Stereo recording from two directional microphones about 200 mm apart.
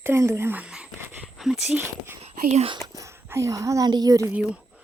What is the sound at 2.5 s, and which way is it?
Speech, 30° right (ahead or behind).